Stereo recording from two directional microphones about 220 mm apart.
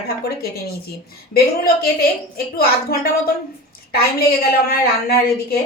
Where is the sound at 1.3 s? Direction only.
45° left (ahead or behind).